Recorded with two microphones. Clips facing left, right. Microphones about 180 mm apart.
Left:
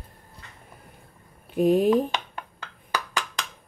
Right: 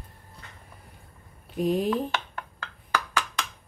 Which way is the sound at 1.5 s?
55° left (ahead or behind).